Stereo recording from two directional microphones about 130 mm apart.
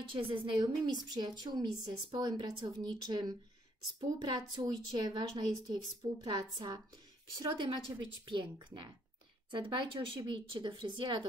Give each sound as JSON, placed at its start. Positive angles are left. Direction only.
{"t": 0.0, "sound": "speech", "side_deg": -40}